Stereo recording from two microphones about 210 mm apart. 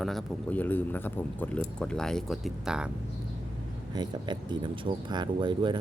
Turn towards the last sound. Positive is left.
turn(degrees=-20)  # may be behind; listen again after turning